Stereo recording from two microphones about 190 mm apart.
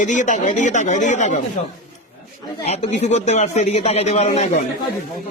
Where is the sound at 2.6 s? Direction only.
35° left (ahead or behind).